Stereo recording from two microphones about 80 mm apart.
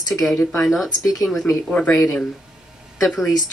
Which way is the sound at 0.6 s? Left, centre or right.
Centre.